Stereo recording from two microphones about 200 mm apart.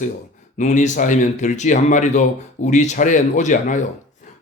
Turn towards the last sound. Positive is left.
turn(degrees=40)  # may be behind; listen again after turning